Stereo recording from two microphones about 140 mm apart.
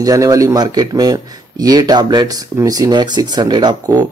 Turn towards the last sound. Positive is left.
turn(degrees=-30)  # may be behind; listen again after turning